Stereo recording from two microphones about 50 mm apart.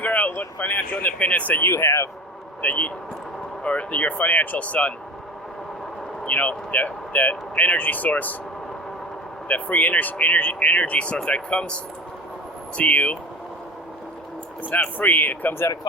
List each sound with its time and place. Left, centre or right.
0.0 s speech: left
1.6 s speech: left
2.6 s speech: left
6.2 s speech: left
9.5 s speech: left
14.7 s speech: left